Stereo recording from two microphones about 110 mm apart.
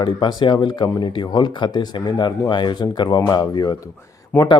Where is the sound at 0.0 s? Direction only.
45° left (ahead or behind).